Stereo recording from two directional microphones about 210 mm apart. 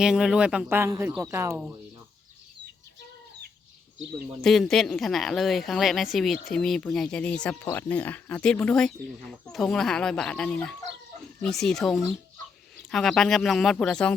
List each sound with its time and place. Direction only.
0.0 s speech: 5° right (ahead or behind)
4.4 s speech: centre (ahead or behind)